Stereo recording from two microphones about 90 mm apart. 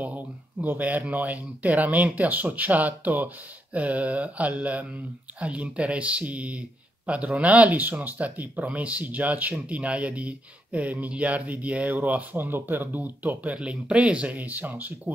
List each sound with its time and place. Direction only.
0.0 s speech: 15° right (ahead or behind)